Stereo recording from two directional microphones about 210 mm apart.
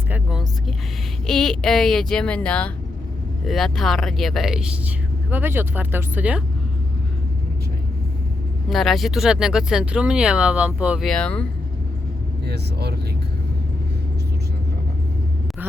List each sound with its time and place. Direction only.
0.1 s speech: 5° right (ahead or behind)
8.7 s speech: centre (ahead or behind)
12.5 s speech: 50° right (ahead or behind)